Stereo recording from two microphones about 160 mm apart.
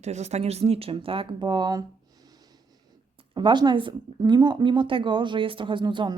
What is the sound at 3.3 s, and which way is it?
A woman's voice, 30° right (ahead or behind).